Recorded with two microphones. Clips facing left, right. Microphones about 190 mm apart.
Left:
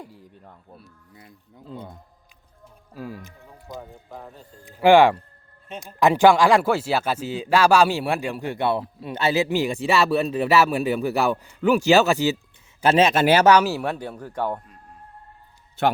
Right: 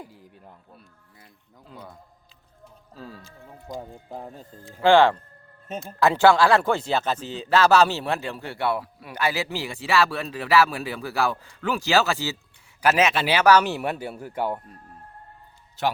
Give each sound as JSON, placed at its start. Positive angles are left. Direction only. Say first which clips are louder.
{"t": 0.0, "sound": "speech", "louder": "left 1 dB", "side_deg": 0}
{"t": 1.1, "sound": "speech", "louder": "left 6 dB", "side_deg": 25}
{"t": 2.9, "sound": "speech", "louder": "left 6 dB", "side_deg": 15}
{"t": 12.8, "sound": "speech", "louder": "left 3 dB", "side_deg": 30}
{"t": 13.1, "sound": "speech", "louder": "left 6 dB", "side_deg": 45}
{"t": 13.6, "sound": "speech", "louder": "left 2 dB", "side_deg": 0}